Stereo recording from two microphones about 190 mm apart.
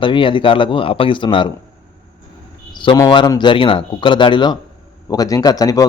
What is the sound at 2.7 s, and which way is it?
Speech, 25° left (ahead or behind).